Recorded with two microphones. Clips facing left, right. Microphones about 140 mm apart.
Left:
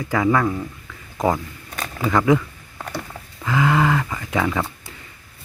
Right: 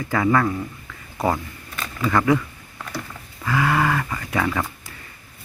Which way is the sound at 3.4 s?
20° left (ahead or behind).